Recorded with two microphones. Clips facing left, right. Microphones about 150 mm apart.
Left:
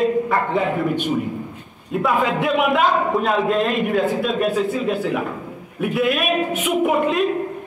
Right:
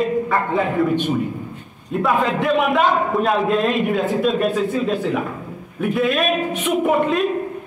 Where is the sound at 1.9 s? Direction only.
Centre (ahead or behind).